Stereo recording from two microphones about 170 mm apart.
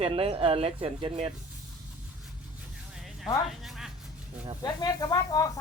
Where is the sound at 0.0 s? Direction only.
35° right (ahead or behind).